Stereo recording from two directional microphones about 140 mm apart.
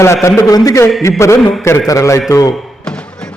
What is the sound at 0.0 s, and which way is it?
A man's voice, 20° left (ahead or behind).